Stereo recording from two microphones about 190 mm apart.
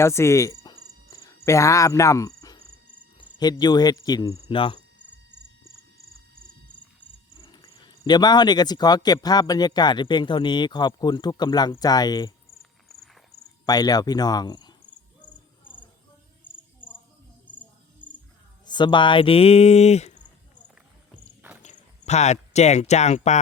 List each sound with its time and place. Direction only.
0.0 s speech: 15° left (ahead or behind)
1.1 s cricket: 20° left (ahead or behind)
1.5 s speech: 15° left (ahead or behind)
4.9 s a sound: 70° right (ahead or behind)
6.3 s wild animals: 45° right (ahead or behind)
7.3 s speech: 25° left (ahead or behind)
12.9 s cricket: centre (ahead or behind)
13.7 s cricket: 20° left (ahead or behind)
18.6 s speech: 25° left (ahead or behind)
21.6 s speech: 40° left (ahead or behind)